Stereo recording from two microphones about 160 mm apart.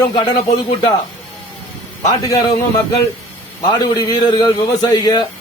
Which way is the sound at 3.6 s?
25° left (ahead or behind).